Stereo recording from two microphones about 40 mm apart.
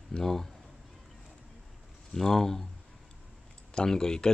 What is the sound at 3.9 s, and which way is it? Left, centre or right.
Speech, centre.